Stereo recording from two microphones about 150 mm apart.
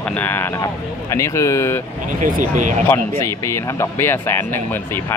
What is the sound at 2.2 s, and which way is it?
Speech, 60° right (ahead or behind).